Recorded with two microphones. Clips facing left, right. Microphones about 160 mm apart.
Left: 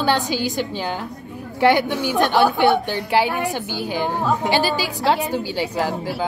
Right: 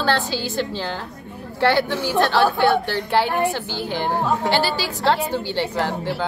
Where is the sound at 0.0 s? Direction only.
15° left (ahead or behind).